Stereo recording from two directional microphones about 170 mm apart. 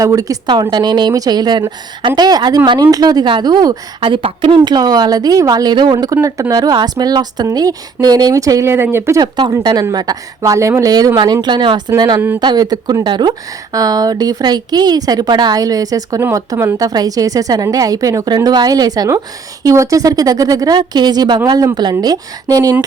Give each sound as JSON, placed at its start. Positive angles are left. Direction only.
{"t": 0.0, "sound": "a woman's voice", "side_deg": -20}